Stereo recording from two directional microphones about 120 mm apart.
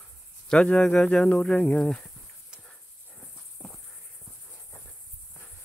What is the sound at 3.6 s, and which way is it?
Walk, 5° left (ahead or behind).